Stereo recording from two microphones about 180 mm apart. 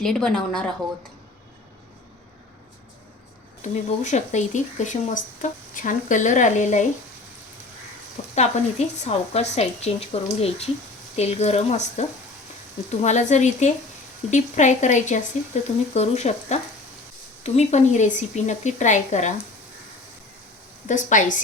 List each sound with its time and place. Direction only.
0.0 s a woman's voice: 5° left (ahead or behind)
3.6 s speech: 40° left (ahead or behind)
8.4 s speech: 35° left (ahead or behind)
20.8 s speech: 45° left (ahead or behind)